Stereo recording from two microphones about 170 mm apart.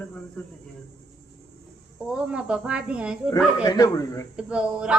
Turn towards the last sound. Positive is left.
turn(degrees=-5)  # may be behind; listen again after turning